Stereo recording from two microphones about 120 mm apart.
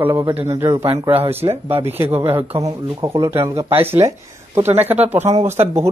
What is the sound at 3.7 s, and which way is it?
Speech, 55° right (ahead or behind).